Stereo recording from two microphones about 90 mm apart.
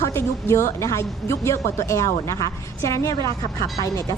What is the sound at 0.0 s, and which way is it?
A woman's voice, 30° left (ahead or behind).